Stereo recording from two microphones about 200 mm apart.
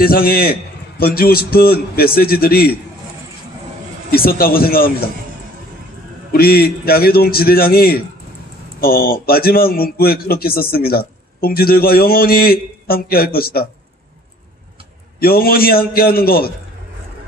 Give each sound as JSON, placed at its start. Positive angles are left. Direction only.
{"t": 0.0, "sound": "a man's voice", "side_deg": 50}
{"t": 4.1, "sound": "a man's voice", "side_deg": 50}
{"t": 6.3, "sound": "a man's voice", "side_deg": 50}
{"t": 15.1, "sound": "a man's voice", "side_deg": 50}